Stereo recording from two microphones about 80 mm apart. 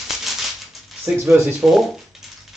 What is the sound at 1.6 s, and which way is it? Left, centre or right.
Speech, centre.